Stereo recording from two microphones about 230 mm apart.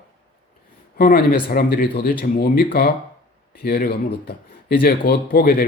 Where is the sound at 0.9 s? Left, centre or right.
Left.